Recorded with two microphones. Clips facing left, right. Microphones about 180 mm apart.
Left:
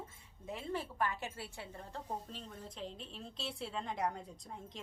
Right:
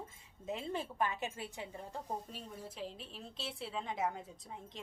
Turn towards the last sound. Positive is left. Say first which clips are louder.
# even
turn(degrees=0)  # may be behind; listen again after turning